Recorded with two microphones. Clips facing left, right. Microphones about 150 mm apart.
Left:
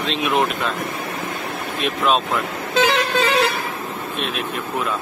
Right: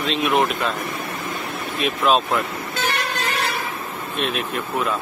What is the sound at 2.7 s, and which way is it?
Vehicle, 70° left (ahead or behind).